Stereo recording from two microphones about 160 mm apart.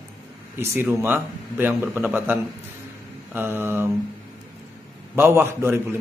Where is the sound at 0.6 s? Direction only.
15° right (ahead or behind).